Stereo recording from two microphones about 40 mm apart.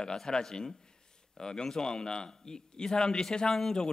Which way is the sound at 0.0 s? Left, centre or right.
Centre.